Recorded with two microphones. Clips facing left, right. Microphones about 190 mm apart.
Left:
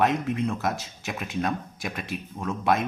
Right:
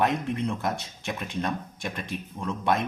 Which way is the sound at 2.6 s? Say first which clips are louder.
Left 2 dB; centre (ahead or behind).